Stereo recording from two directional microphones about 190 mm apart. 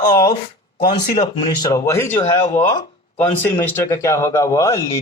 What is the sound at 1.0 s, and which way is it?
Speech, 40° left (ahead or behind).